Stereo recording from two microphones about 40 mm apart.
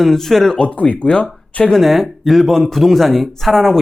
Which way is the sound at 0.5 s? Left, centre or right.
Left.